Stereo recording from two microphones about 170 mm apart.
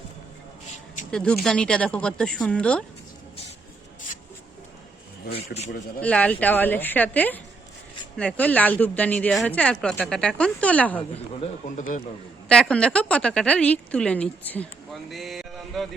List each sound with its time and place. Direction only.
1.1 s speech: 5° left (ahead or behind)
6.0 s a woman's voice: 5° left (ahead or behind)
11.1 s speech: 45° left (ahead or behind)
12.5 s a woman's voice: 5° left (ahead or behind)
15.1 s a sound: centre (ahead or behind)